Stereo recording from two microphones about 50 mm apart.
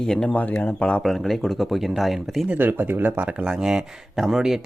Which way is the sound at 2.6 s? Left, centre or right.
Right.